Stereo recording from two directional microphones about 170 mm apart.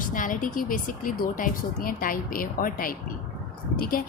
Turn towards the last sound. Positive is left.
turn(degrees=55)  # may be behind; listen again after turning